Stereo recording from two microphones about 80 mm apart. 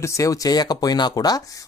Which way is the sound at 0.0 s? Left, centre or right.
Left.